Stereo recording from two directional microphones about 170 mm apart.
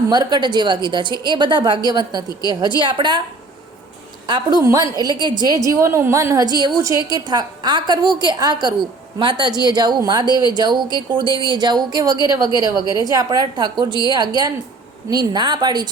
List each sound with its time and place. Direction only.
0.1 s a woman's voice: 25° right (ahead or behind)
4.3 s a woman's voice: 25° right (ahead or behind)